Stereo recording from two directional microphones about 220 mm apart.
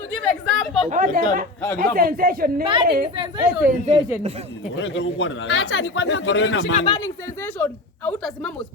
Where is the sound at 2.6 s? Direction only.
25° right (ahead or behind).